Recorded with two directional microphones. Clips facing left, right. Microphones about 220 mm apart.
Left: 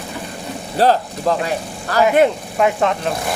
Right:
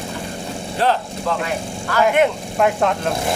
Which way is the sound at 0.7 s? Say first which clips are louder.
Left 4 dB; 40° left (ahead or behind).